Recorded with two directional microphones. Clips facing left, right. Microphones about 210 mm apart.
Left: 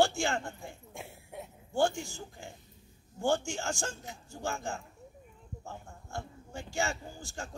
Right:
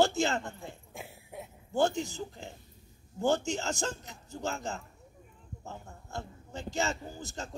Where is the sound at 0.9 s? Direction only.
Centre (ahead or behind).